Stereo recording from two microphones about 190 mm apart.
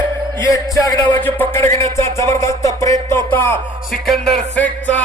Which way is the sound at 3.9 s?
Centre (ahead or behind).